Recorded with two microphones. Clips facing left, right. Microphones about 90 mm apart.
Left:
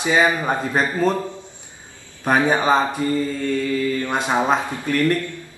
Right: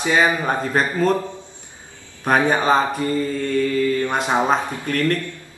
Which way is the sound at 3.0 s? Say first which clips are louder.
Left 1 dB; 15° left (ahead or behind).